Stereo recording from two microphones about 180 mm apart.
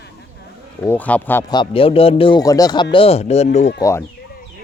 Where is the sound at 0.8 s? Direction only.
10° left (ahead or behind).